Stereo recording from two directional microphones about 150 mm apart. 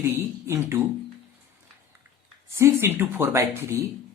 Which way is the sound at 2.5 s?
15° right (ahead or behind).